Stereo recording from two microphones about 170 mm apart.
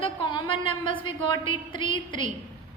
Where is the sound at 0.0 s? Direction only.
30° left (ahead or behind).